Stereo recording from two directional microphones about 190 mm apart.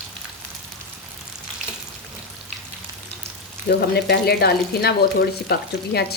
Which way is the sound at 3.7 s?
55° left (ahead or behind).